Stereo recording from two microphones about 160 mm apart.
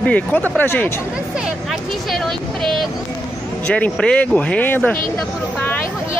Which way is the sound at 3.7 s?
5° left (ahead or behind).